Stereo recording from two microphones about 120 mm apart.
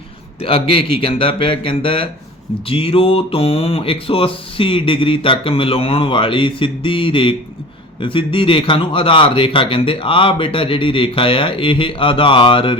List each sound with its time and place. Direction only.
0.4 s speech: 50° left (ahead or behind)